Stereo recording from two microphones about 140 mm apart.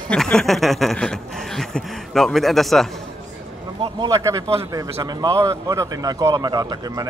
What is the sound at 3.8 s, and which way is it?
A man's voice, 30° right (ahead or behind).